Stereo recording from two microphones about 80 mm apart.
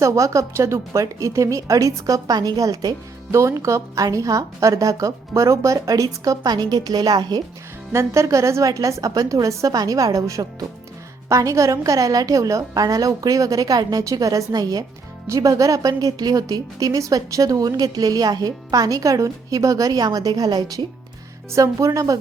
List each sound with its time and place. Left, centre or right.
0.0 s a woman's voice: right
3.3 s a woman's voice: right
7.9 s a woman's voice: right
21.5 s a woman's voice: right